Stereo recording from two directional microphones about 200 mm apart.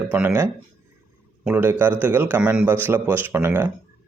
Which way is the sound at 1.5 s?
10° right (ahead or behind).